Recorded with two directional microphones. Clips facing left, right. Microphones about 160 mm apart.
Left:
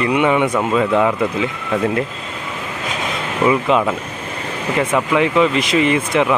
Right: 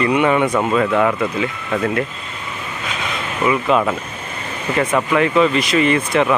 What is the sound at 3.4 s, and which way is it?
Speech, 20° left (ahead or behind).